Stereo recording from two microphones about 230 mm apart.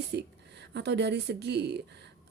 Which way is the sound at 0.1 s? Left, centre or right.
Right.